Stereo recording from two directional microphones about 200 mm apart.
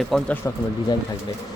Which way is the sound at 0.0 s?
Centre (ahead or behind).